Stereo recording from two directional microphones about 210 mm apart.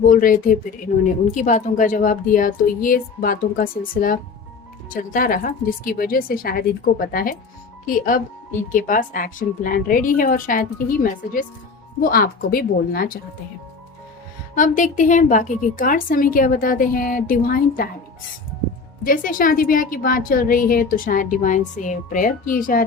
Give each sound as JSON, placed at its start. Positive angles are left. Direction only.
{"t": 0.1, "sound": "a woman's voice", "side_deg": 40}
{"t": 14.5, "sound": "a woman's voice", "side_deg": 40}
{"t": 19.0, "sound": "a woman's voice", "side_deg": 40}